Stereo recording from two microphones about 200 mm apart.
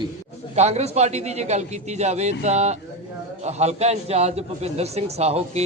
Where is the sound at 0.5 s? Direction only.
35° right (ahead or behind).